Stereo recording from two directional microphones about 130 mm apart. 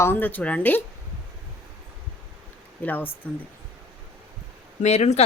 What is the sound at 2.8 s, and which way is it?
Speech, 15° left (ahead or behind).